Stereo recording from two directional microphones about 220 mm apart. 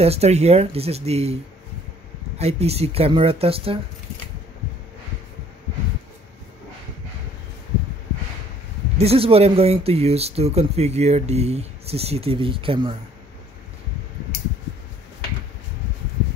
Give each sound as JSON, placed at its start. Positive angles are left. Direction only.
{"t": 0.0, "sound": "speech", "side_deg": -30}
{"t": 8.9, "sound": "speech", "side_deg": -25}